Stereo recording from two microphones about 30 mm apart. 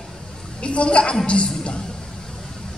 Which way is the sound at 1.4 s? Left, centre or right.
Left.